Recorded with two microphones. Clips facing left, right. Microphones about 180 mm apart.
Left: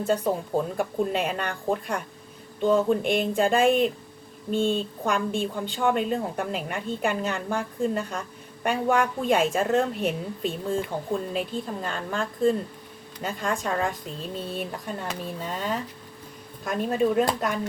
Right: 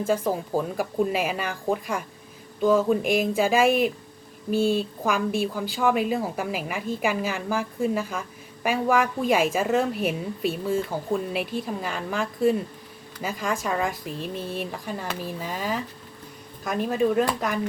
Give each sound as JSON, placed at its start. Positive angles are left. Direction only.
{"t": 0.0, "sound": "a woman's voice", "side_deg": 0}
{"t": 14.1, "sound": "speech", "side_deg": 30}
{"t": 14.5, "sound": "a woman's voice", "side_deg": 0}